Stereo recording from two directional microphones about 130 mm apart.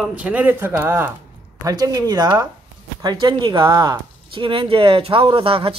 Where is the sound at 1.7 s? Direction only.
30° right (ahead or behind).